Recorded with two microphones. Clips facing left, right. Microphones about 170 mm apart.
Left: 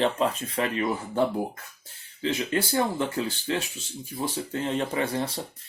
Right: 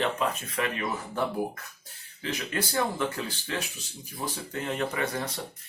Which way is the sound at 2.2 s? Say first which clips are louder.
Left 5 dB; 30° left (ahead or behind).